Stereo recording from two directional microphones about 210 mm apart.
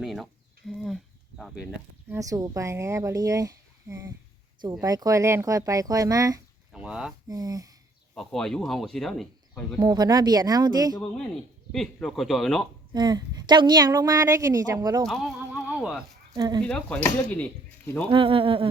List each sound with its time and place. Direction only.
0.0 s speech: centre (ahead or behind)
1.4 s speech: centre (ahead or behind)
2.0 s a woman's voice: 15° right (ahead or behind)
6.7 s speech: 5° right (ahead or behind)
7.3 s speech: 15° right (ahead or behind)
8.1 s speech: centre (ahead or behind)
9.8 s a woman's voice: 20° right (ahead or behind)
10.9 s speech: 5° left (ahead or behind)
12.9 s a woman's voice: 20° right (ahead or behind)
15.0 s speech: centre (ahead or behind)
16.3 s speech: 20° right (ahead or behind)
16.6 s speech: 5° left (ahead or behind)
18.1 s speech: 25° right (ahead or behind)